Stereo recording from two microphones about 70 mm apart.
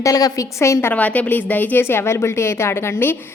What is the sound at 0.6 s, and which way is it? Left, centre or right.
Speech, left.